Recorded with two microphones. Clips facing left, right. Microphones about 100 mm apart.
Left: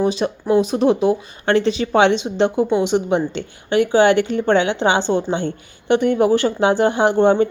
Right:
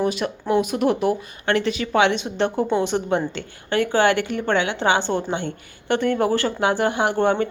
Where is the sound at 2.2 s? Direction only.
15° left (ahead or behind).